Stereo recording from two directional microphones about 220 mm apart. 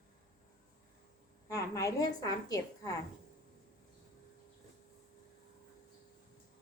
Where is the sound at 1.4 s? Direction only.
15° left (ahead or behind).